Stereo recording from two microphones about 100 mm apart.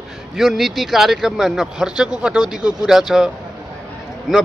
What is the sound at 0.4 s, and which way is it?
A man's voice, centre (ahead or behind).